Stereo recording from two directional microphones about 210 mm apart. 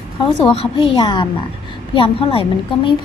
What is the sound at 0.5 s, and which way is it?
A woman's voice, 25° left (ahead or behind).